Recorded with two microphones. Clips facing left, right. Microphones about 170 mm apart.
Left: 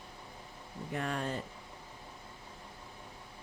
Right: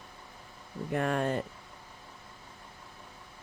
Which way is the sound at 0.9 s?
55° right (ahead or behind).